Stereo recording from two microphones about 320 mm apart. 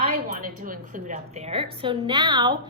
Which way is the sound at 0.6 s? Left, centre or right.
Right.